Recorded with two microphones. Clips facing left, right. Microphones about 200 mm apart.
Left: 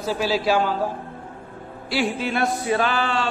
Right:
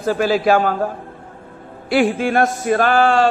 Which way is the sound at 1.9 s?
50° right (ahead or behind).